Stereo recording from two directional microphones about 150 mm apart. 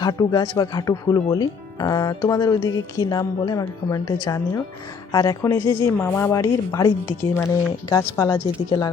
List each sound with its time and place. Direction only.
0.0 s speech: 25° left (ahead or behind)